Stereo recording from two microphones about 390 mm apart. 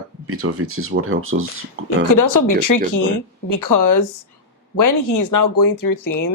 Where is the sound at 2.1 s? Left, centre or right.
Left.